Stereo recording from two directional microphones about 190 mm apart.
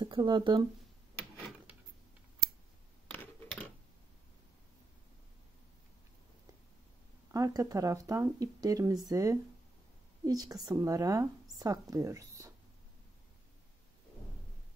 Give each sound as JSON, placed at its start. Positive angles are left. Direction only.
{"t": 0.0, "sound": "speech", "side_deg": -25}
{"t": 3.1, "sound": "a sound", "side_deg": 10}
{"t": 7.2, "sound": "speech", "side_deg": -15}